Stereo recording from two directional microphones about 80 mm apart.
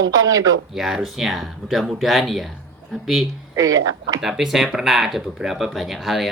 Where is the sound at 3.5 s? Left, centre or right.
Right.